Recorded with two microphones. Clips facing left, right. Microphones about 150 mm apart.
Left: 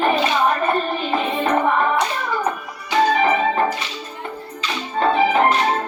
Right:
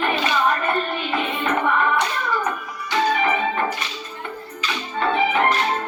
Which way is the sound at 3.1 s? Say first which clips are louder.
Left 4 dB; 35° left (ahead or behind).